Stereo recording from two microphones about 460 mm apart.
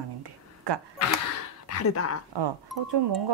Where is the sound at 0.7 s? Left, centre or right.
Right.